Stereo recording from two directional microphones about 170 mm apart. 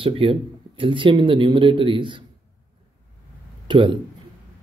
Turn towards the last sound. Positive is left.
turn(degrees=-30)  # may be behind; listen again after turning